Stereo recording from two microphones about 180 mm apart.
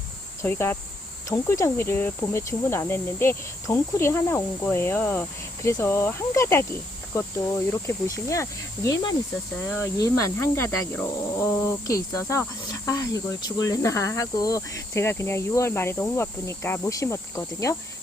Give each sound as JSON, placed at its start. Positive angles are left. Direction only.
{"t": 0.4, "sound": "speech", "side_deg": 15}